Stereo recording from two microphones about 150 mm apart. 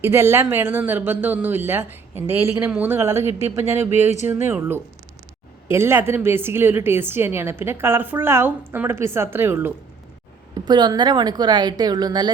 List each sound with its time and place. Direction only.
0.0 s a woman's voice: 15° right (ahead or behind)
10.5 s a woman's voice: 30° right (ahead or behind)